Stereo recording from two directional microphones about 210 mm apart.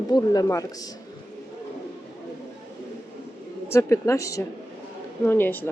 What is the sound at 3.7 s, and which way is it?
A woman's voice, 15° left (ahead or behind).